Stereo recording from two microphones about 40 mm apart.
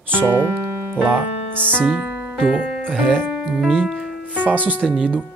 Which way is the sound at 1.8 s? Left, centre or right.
Right.